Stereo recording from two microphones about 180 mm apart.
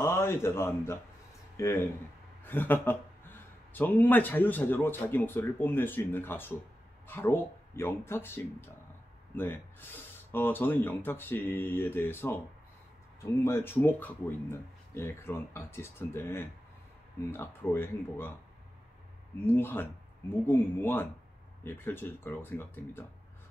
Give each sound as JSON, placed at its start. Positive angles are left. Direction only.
{"t": 0.0, "sound": "a man's voice", "side_deg": 15}
{"t": 19.4, "sound": "a man's voice", "side_deg": 10}